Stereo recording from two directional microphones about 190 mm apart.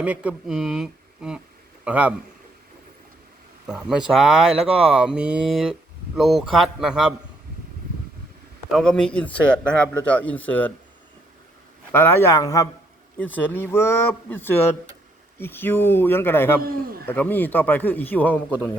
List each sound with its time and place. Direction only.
0.0 s a man's voice: 5° right (ahead or behind)
3.7 s speech: 5° right (ahead or behind)
8.7 s a man's voice: 5° left (ahead or behind)
11.9 s a man's voice: 10° left (ahead or behind)
16.6 s a man's voice: 50° right (ahead or behind)
17.1 s a man's voice: 10° left (ahead or behind)